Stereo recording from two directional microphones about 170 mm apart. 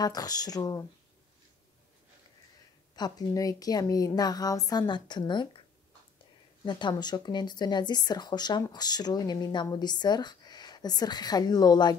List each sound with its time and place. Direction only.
0.0 s speech: 20° left (ahead or behind)
3.0 s speech: 20° left (ahead or behind)
6.6 s speech: 25° left (ahead or behind)